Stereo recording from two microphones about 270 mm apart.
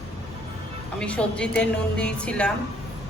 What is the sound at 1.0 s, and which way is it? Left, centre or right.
A woman's voice, centre.